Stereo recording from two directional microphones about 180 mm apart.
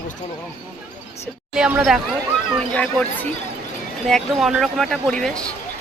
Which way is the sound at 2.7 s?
5° left (ahead or behind).